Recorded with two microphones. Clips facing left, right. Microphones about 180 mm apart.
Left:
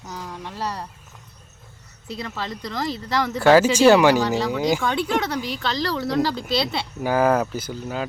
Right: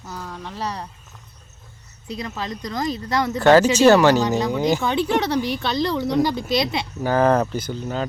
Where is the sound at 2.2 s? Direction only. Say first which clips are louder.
Right 1 dB; centre (ahead or behind).